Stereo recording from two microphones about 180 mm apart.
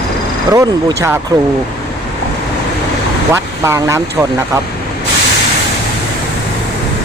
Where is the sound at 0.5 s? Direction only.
15° right (ahead or behind).